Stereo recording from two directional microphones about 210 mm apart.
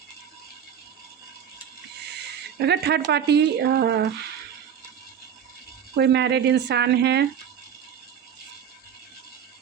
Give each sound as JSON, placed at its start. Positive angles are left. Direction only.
{"t": 2.6, "sound": "speech", "side_deg": -50}
{"t": 6.0, "sound": "speech", "side_deg": -55}